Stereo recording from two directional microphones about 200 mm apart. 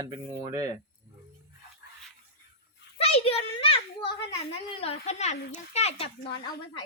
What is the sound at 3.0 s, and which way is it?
Children playing, 30° left (ahead or behind).